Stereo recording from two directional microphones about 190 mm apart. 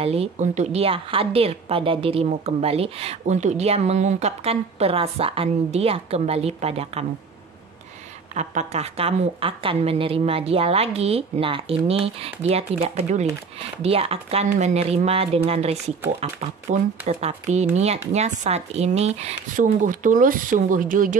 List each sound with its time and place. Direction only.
0.0 s a woman's voice: 30° right (ahead or behind)
8.4 s a woman's voice: 35° right (ahead or behind)